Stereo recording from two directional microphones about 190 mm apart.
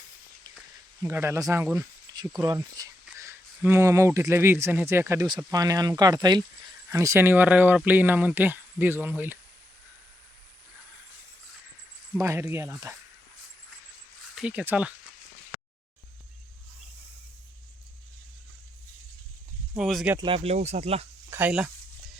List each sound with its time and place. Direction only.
1.0 s speech: 15° right (ahead or behind)
12.1 s speech: 15° right (ahead or behind)
14.3 s speech: 5° right (ahead or behind)
19.7 s speech: centre (ahead or behind)
20.1 s speech: 30° right (ahead or behind)
21.2 s speech: 10° right (ahead or behind)